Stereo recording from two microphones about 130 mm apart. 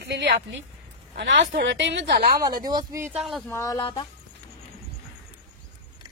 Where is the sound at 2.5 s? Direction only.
30° right (ahead or behind).